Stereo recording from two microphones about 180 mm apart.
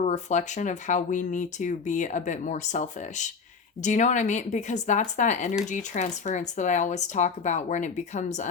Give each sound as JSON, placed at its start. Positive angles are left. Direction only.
{"t": 0.0, "sound": "speech", "side_deg": 40}